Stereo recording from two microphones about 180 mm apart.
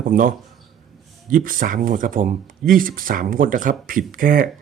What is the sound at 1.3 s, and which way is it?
Speech, 50° right (ahead or behind).